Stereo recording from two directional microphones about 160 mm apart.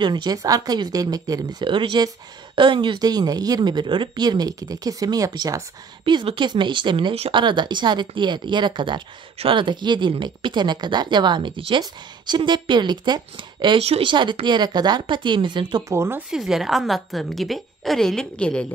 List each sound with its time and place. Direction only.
0.0 s speech: 25° right (ahead or behind)
15.9 s speech: 15° right (ahead or behind)
16.3 s a woman's voice: centre (ahead or behind)